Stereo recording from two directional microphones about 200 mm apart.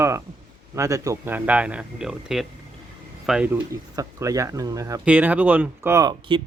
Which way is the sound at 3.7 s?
15° right (ahead or behind).